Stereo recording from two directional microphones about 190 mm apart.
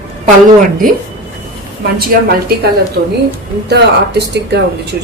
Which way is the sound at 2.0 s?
55° right (ahead or behind).